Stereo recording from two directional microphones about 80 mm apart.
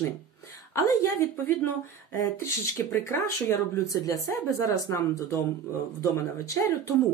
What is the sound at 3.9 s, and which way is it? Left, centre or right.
Speech, left.